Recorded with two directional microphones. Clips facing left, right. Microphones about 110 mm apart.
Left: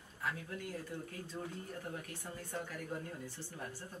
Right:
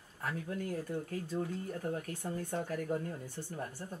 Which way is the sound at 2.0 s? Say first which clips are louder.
Right 8 dB; 40° right (ahead or behind).